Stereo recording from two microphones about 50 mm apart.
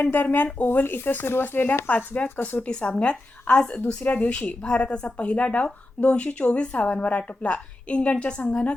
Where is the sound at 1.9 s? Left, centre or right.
Left.